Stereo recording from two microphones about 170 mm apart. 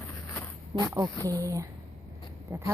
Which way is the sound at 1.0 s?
20° right (ahead or behind).